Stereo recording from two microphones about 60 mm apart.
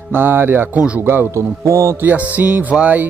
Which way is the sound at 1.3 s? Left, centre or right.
Right.